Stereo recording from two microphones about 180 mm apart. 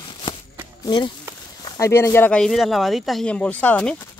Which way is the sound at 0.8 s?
25° left (ahead or behind).